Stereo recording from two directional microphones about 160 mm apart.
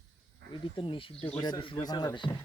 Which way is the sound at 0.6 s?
30° left (ahead or behind).